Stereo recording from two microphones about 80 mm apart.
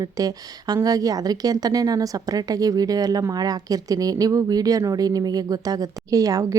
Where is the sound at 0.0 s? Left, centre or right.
Right.